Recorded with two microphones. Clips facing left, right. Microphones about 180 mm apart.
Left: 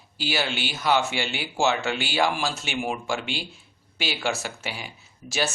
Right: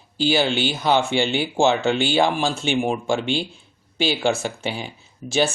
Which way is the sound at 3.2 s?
5° left (ahead or behind).